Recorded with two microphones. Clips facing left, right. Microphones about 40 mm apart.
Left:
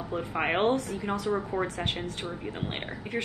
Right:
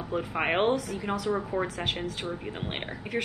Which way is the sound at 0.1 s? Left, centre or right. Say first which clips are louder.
Right 1 dB; centre.